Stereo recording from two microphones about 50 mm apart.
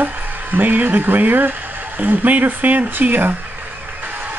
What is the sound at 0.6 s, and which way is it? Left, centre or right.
Speech, right.